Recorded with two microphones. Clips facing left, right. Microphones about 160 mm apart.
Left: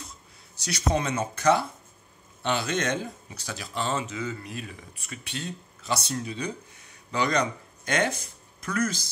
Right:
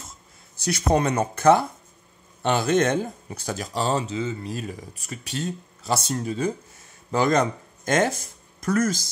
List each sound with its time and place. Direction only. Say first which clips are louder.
0.7 s speech: right 5 dB; 50° right (ahead or behind)